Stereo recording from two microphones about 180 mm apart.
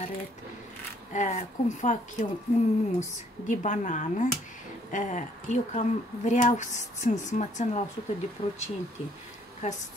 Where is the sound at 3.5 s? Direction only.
45° left (ahead or behind).